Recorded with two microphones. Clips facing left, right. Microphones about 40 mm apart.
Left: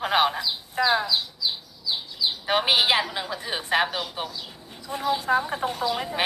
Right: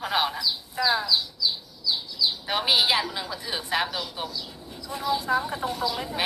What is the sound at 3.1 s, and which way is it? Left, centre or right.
Speech, left.